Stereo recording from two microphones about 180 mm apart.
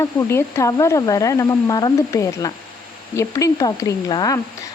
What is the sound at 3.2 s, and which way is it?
Speech, 20° left (ahead or behind).